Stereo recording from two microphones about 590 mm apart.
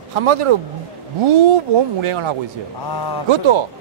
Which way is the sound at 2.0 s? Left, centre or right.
Right.